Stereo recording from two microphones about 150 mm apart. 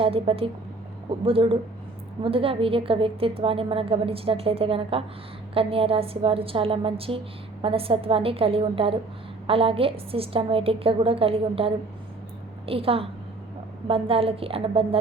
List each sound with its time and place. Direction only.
0.0 s a woman's voice: 40° right (ahead or behind)